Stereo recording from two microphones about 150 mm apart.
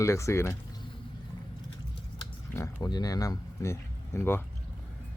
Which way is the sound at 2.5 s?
20° left (ahead or behind).